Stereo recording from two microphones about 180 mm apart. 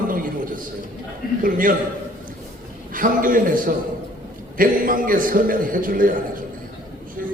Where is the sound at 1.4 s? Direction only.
50° right (ahead or behind).